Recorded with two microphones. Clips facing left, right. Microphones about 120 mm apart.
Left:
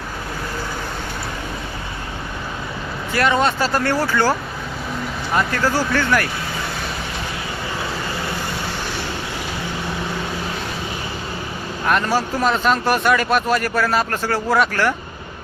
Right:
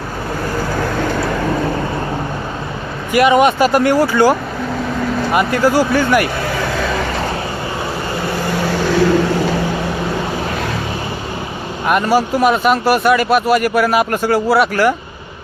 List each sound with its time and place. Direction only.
0.9 s vehicle: 90° right
3.1 s speech: 15° right (ahead or behind)
6.7 s a sound: 90° right
11.9 s speech: 10° right (ahead or behind)